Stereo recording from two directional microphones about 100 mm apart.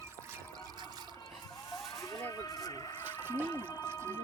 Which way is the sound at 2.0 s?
35° left (ahead or behind).